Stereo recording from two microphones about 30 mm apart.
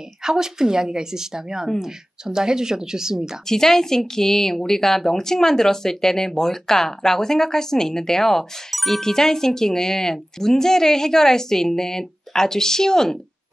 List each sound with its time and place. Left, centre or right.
0.2 s speech: centre
3.4 s speech: centre
8.7 s speech: centre
9.0 s speech: centre